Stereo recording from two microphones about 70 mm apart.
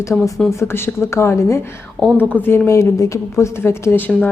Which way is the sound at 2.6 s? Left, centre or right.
Left.